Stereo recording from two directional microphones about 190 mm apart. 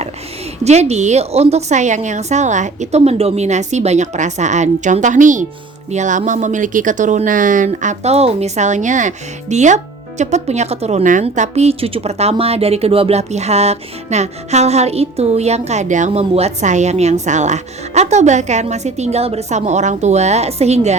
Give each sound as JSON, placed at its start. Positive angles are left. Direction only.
{"t": 0.6, "sound": "speech", "side_deg": -35}